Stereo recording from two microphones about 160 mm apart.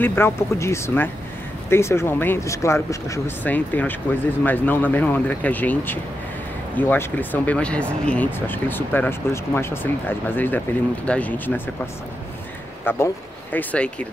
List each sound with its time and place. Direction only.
0.0 s speech: 15° left (ahead or behind)